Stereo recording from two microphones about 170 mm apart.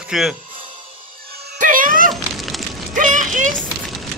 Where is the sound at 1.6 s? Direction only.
55° right (ahead or behind).